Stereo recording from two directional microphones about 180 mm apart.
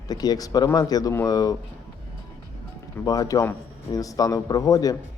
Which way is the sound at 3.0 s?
20° left (ahead or behind).